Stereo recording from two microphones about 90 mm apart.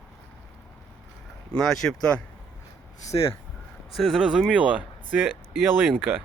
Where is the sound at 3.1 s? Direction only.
60° left (ahead or behind).